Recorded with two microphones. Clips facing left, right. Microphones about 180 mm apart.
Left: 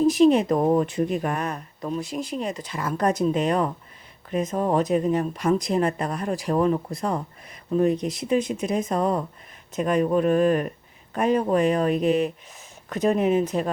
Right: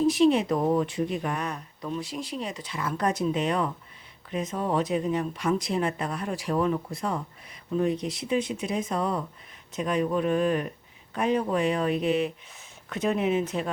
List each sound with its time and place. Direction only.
0.1 s speech: 45° left (ahead or behind)